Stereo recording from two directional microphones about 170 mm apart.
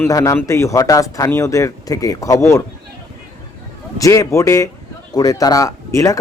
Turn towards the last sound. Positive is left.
turn(degrees=20)  # may be behind; listen again after turning